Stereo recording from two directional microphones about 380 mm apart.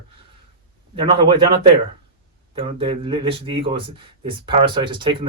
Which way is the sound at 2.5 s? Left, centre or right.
Centre.